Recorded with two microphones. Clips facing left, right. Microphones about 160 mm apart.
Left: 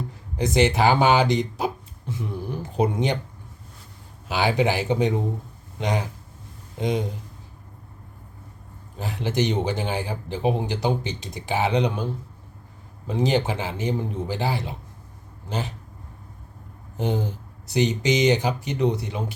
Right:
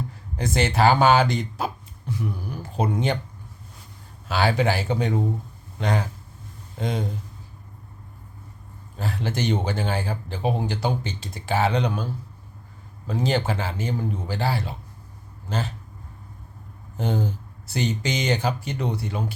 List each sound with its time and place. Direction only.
0.3 s speech: 15° left (ahead or behind)
4.3 s speech: 15° left (ahead or behind)
9.0 s speech: 15° left (ahead or behind)
13.1 s speech: 20° left (ahead or behind)
17.0 s speech: 15° left (ahead or behind)